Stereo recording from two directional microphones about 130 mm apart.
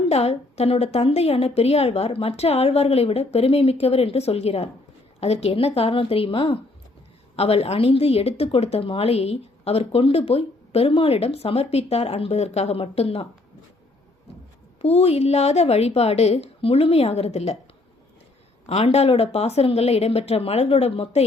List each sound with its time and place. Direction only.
0.1 s a woman's voice: 55° left (ahead or behind)
14.8 s a woman's voice: 50° left (ahead or behind)
18.6 s a woman's voice: 60° left (ahead or behind)